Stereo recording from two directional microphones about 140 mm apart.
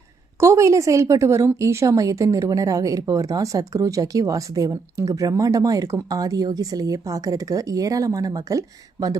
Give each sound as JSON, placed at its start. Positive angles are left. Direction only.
{"t": 0.3, "sound": "a woman's voice", "side_deg": -20}